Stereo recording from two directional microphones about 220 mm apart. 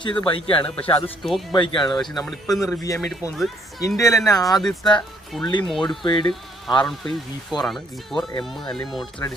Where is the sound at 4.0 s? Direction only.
15° left (ahead or behind).